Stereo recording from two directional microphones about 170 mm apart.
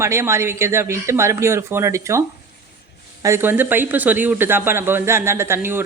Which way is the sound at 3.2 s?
15° right (ahead or behind).